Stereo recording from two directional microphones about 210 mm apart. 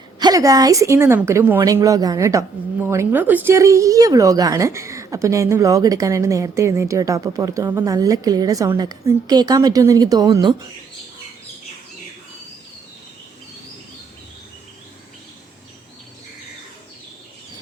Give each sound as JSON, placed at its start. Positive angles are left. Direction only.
{"t": 0.2, "sound": "speech", "side_deg": -15}